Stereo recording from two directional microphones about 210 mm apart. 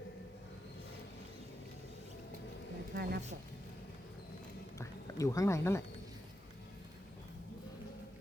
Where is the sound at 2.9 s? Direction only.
50° right (ahead or behind).